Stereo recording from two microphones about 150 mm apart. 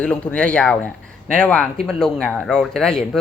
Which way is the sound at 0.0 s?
5° left (ahead or behind).